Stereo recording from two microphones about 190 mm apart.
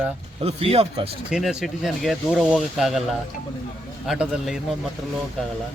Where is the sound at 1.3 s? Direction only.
5° right (ahead or behind).